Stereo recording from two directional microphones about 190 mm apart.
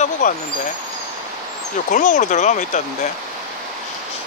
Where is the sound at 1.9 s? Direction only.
40° left (ahead or behind).